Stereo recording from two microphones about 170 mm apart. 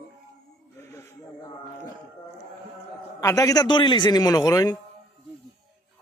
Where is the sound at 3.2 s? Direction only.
20° left (ahead or behind).